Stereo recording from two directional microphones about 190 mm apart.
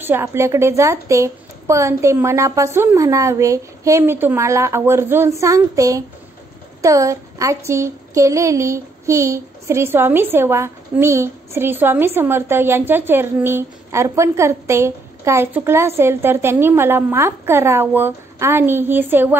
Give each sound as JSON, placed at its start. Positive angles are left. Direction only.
{"t": 0.0, "sound": "a woman's voice", "side_deg": -10}